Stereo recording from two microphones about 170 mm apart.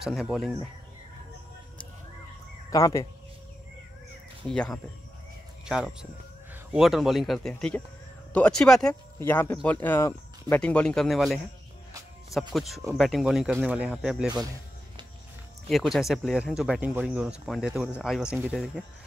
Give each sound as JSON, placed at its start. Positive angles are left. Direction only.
{"t": 0.0, "sound": "speech", "side_deg": 0}
{"t": 2.7, "sound": "speech", "side_deg": 20}
{"t": 4.5, "sound": "speech", "side_deg": 5}
{"t": 6.5, "sound": "speech", "side_deg": -5}
{"t": 12.5, "sound": "speech", "side_deg": 0}
{"t": 15.7, "sound": "speech", "side_deg": 0}